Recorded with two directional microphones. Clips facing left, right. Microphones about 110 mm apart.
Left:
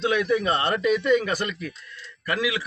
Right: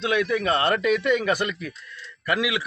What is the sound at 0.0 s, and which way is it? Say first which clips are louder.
A man's voice: left 1 dB; 30° left (ahead or behind).